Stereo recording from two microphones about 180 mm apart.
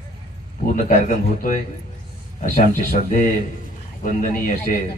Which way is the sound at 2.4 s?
50° left (ahead or behind).